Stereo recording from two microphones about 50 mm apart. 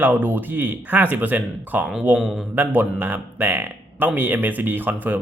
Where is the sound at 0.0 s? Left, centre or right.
Right.